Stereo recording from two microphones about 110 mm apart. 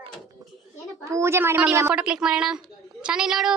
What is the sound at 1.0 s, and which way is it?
Speech, 25° right (ahead or behind).